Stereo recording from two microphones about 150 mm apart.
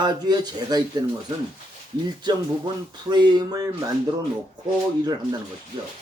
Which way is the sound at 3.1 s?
30° right (ahead or behind).